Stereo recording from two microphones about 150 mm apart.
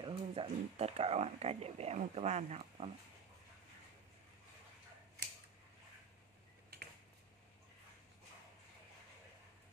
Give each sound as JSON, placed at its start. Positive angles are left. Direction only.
{"t": 0.0, "sound": "speech", "side_deg": -35}